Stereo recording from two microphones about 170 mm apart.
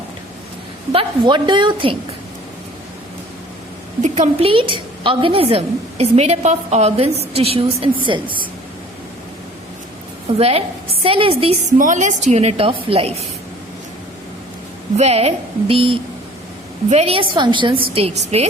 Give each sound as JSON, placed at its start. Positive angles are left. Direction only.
{"t": 0.9, "sound": "a woman's voice", "side_deg": -25}
{"t": 4.0, "sound": "a woman's voice", "side_deg": -45}
{"t": 10.2, "sound": "a woman's voice", "side_deg": -35}
{"t": 11.8, "sound": "a woman's voice", "side_deg": -50}
{"t": 14.9, "sound": "a woman's voice", "side_deg": -40}